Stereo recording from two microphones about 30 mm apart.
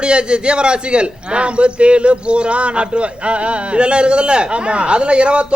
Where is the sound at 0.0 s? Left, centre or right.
Right.